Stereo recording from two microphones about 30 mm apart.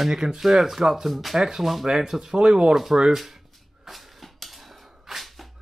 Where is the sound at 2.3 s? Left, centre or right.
Right.